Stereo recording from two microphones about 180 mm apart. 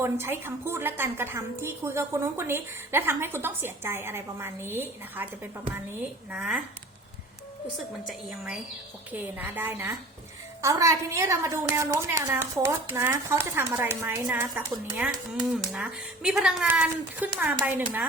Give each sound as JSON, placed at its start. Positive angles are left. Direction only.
{"t": 0.0, "sound": "a woman's voice", "side_deg": -15}
{"t": 9.1, "sound": "a woman's voice", "side_deg": -10}